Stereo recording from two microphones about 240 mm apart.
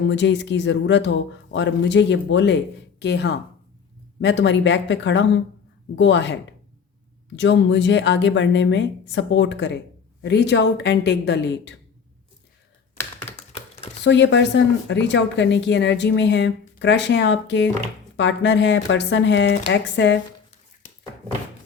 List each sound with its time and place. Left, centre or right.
0.1 s a woman's voice: left
7.3 s a woman's voice: left
13.3 s a sound: left
14.0 s a woman's voice: left